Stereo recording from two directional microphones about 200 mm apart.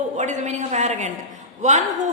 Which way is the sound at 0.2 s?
35° right (ahead or behind).